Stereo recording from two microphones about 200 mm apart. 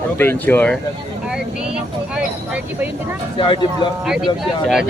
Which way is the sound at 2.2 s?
5° right (ahead or behind).